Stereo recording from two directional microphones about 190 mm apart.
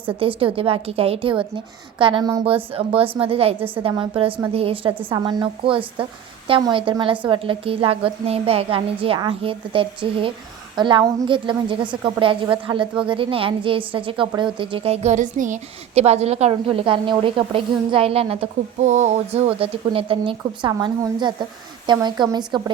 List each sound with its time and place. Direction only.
0.0 s a woman's voice: 25° right (ahead or behind)